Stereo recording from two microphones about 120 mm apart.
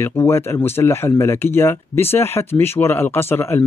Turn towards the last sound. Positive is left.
turn(degrees=20)  # may be behind; listen again after turning